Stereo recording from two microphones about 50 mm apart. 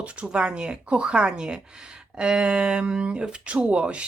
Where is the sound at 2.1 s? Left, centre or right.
Centre.